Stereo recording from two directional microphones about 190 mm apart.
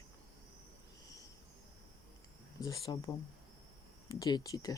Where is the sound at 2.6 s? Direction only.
20° left (ahead or behind).